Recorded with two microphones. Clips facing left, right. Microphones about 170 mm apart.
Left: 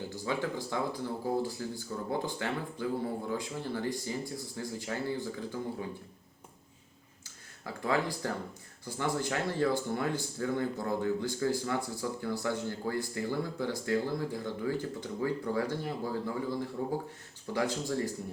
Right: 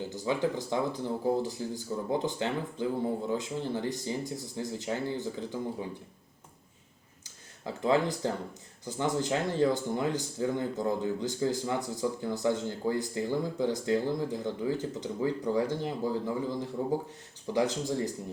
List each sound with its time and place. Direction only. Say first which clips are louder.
0.3 s speech: right 4 dB; 20° right (ahead or behind)
7.3 s speech: right 4 dB; 20° right (ahead or behind)